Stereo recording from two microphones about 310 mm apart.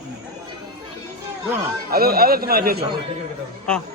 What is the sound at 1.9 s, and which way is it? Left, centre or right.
Speech, right.